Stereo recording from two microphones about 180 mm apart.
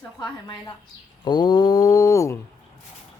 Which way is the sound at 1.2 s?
25° left (ahead or behind).